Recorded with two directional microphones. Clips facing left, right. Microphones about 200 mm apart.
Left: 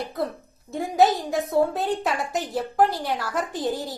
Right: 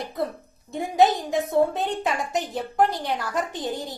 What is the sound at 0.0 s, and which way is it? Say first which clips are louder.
A woman's voice: even; centre (ahead or behind).